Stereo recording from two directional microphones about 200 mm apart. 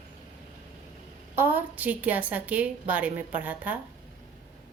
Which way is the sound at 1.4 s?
10° right (ahead or behind).